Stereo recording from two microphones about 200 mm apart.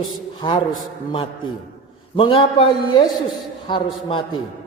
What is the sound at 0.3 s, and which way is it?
Speech, 25° left (ahead or behind).